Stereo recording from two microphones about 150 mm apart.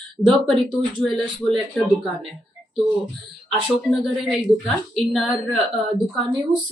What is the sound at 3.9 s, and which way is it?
A woman's voice, centre (ahead or behind).